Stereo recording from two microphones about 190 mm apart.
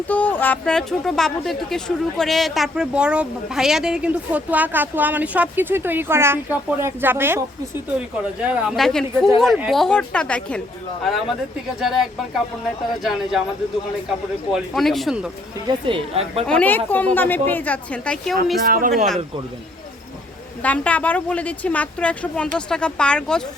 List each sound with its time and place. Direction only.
0.1 s speech: 10° left (ahead or behind); by 7.4 s 10° right (ahead or behind)
8.4 s speech: centre (ahead or behind)
14.5 s speech: centre (ahead or behind)
15.6 s a woman's voice: 30° right (ahead or behind)
16.5 s a woman's voice: 10° left (ahead or behind)
18.6 s speech: 50° right (ahead or behind)
20.6 s a woman's voice: 5° left (ahead or behind)